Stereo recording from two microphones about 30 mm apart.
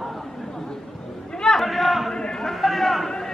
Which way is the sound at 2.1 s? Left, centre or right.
Left.